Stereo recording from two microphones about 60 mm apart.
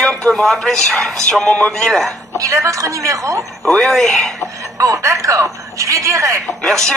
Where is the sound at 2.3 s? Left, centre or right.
Right.